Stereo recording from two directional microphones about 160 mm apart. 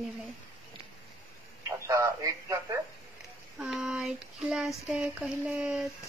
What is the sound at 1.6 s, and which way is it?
Speech, 20° right (ahead or behind).